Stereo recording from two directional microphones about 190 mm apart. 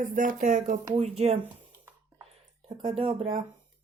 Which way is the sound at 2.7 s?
30° right (ahead or behind).